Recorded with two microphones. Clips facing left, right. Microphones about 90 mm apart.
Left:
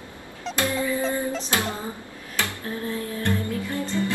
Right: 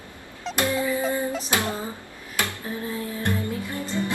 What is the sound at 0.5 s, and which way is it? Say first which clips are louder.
Music: right 1 dB; 20° right (ahead or behind).